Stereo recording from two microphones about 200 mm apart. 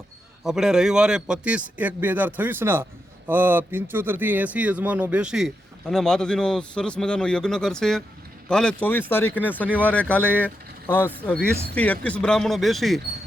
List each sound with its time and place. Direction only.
0.4 s a man's voice: 5° right (ahead or behind)